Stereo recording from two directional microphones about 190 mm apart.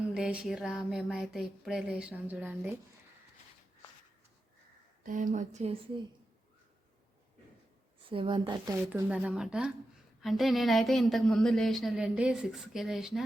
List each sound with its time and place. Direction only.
0.1 s speech: 5° right (ahead or behind)
5.0 s speech: 45° right (ahead or behind)
8.1 s a woman's voice: 25° right (ahead or behind)
8.9 s speech: 5° right (ahead or behind)